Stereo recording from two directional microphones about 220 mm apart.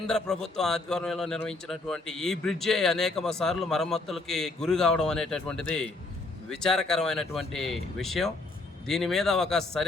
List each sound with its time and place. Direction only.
0.1 s a man's voice: centre (ahead or behind)